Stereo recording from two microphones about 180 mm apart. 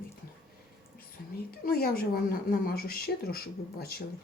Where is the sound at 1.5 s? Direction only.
55° left (ahead or behind).